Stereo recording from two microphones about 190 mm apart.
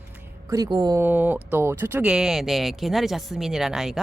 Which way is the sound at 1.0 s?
10° right (ahead or behind).